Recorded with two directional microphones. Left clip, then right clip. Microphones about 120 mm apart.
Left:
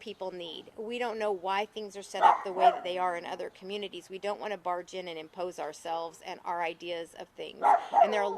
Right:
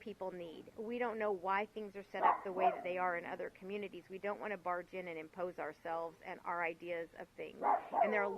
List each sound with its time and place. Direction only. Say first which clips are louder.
0.0 s speech: left 6 dB; 40° left (ahead or behind)